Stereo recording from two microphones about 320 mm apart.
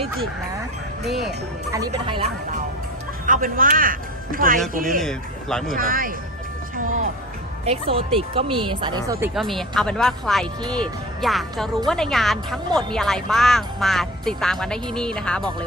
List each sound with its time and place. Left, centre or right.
1.7 s a man's voice: centre
4.9 s a woman's voice: centre
5.7 s a man's voice: right; by 9.3 s centre
9.3 s a woman's voice: centre